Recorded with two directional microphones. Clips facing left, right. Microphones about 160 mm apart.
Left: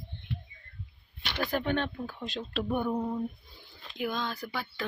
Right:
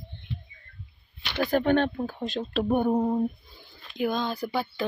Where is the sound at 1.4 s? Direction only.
45° right (ahead or behind).